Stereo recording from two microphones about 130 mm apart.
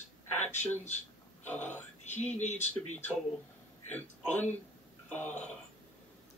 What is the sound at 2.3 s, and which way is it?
Speech, 65° left (ahead or behind).